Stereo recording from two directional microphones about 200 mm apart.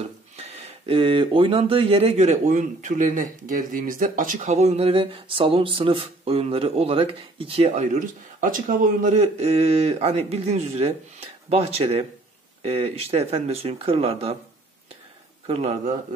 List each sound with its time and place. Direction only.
0.0 s speech: 30° right (ahead or behind)
15.4 s speech: 30° right (ahead or behind)